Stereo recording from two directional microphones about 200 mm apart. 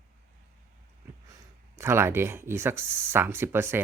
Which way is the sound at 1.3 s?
15° right (ahead or behind).